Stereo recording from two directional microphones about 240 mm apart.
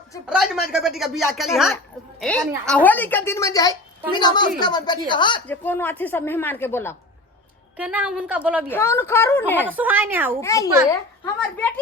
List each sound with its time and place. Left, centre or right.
0.3 s a woman's voice: centre
5.5 s a woman's voice: centre
7.8 s speech: centre
8.7 s a woman's voice: centre
9.6 s a woman's voice: centre
10.4 s a woman's voice: centre